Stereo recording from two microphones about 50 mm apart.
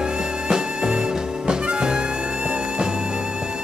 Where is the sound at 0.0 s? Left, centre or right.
Centre.